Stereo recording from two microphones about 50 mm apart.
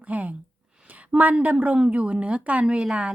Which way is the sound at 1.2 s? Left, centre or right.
Right.